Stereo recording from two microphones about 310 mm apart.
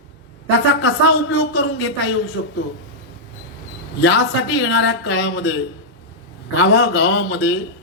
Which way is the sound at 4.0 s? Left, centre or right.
Left.